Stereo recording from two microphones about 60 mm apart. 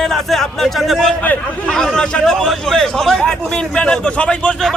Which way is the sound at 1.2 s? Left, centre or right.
Left.